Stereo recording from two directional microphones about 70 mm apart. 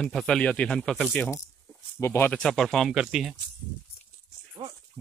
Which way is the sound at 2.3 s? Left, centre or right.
Centre.